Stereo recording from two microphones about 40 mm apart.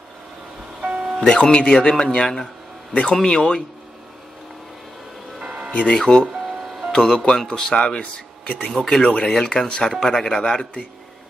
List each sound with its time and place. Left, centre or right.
0.7 s music: right
1.2 s speech: left
2.9 s speech: left
5.4 s music: right
5.7 s speech: left
5.9 s speech: centre
6.2 s music: centre
6.9 s speech: centre